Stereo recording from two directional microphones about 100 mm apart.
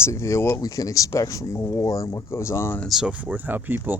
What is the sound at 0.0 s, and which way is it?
Speech, 30° left (ahead or behind).